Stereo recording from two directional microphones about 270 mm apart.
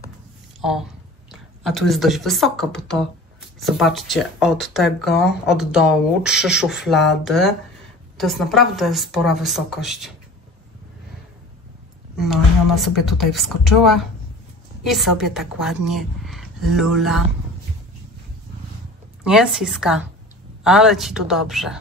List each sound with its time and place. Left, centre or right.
0.6 s speech: centre
12.2 s speech: centre
19.2 s speech: centre